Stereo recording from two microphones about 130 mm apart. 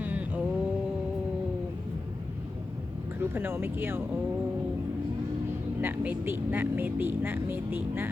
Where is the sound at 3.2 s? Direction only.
15° right (ahead or behind).